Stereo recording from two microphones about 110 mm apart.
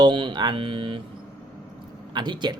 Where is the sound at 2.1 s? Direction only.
45° right (ahead or behind).